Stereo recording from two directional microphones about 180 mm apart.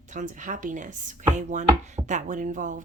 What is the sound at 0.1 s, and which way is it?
Speech, 45° right (ahead or behind).